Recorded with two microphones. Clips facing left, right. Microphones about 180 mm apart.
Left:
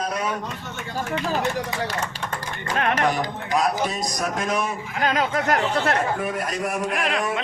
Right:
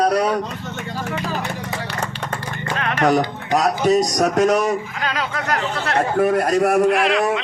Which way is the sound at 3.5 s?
40° right (ahead or behind).